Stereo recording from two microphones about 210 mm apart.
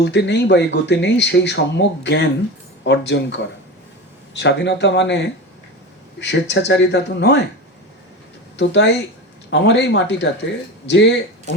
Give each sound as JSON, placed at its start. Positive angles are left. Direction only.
{"t": 0.0, "sound": "speech", "side_deg": 55}
{"t": 8.5, "sound": "speech", "side_deg": 55}